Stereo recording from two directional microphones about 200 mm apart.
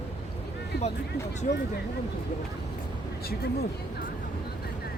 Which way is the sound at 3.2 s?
50° left (ahead or behind).